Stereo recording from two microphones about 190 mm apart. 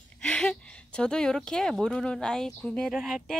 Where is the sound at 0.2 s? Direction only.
5° left (ahead or behind).